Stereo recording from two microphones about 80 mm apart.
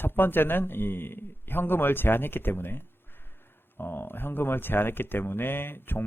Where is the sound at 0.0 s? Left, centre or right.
Left.